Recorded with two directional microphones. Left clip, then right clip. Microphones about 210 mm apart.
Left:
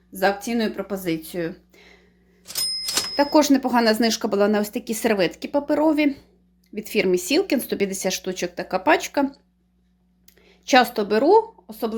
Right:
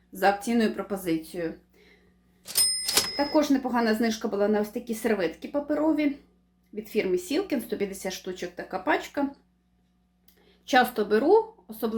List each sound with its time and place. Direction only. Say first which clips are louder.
0.1 s speech: left 2 dB; 25° left (ahead or behind)
2.4 s cash register: left 1 dB; centre (ahead or behind)
3.2 s speech: left 9 dB; 45° left (ahead or behind)
10.2 s speech: left 8 dB; 35° left (ahead or behind)